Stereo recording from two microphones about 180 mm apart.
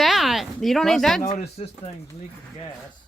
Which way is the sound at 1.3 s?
35° left (ahead or behind).